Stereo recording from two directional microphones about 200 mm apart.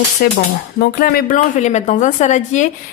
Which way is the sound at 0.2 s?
50° left (ahead or behind).